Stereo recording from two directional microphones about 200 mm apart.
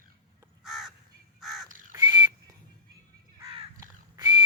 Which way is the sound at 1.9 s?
20° right (ahead or behind).